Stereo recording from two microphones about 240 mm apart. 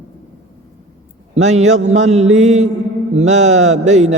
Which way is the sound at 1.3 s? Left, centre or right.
Right.